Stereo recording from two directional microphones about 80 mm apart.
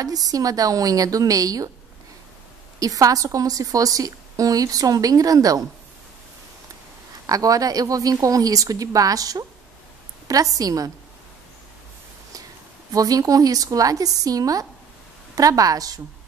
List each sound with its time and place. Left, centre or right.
0.0 s a woman's voice: right
2.8 s a woman's voice: right
7.2 s a woman's voice: right
12.9 s a woman's voice: right